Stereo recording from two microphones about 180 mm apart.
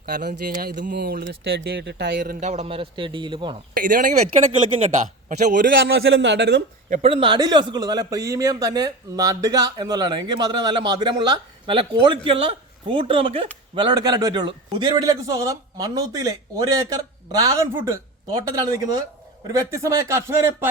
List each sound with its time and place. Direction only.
0.0 s speech: 60° right (ahead or behind)
2.1 s a man's voice: 50° right (ahead or behind); by 3.6 s 25° right (ahead or behind)
3.8 s speech: 50° right (ahead or behind)
5.6 s a man's voice: 85° right
6.9 s a man's voice: 35° right (ahead or behind); by 20.7 s 15° right (ahead or behind)